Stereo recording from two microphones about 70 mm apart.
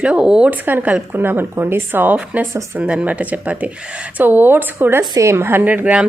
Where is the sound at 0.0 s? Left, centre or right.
Centre.